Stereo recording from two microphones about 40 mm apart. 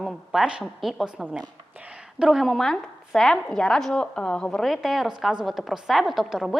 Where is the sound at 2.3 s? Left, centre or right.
Centre.